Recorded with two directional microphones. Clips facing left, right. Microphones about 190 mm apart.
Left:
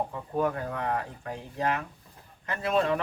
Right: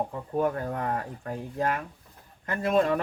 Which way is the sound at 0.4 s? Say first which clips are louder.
Right 1 dB; 40° right (ahead or behind).